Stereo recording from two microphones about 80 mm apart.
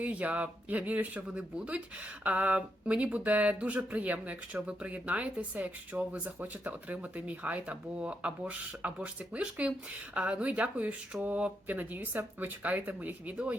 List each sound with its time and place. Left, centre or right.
0.0 s speech: centre